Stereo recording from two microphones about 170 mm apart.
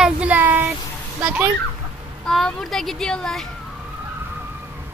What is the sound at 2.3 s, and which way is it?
Speech, centre (ahead or behind).